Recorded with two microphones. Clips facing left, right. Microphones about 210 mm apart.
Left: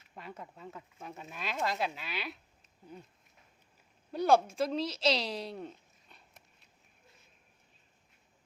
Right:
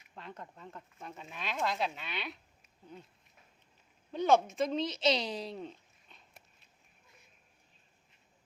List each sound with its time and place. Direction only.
0.1 s speech: 10° left (ahead or behind)
4.1 s speech: 5° left (ahead or behind)